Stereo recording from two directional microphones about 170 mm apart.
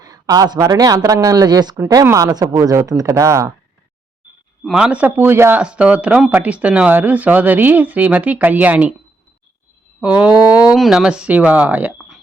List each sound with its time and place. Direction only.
0.0 s speech: 20° right (ahead or behind)
4.6 s a man's voice: 5° right (ahead or behind)
10.0 s a man's voice: 5° right (ahead or behind)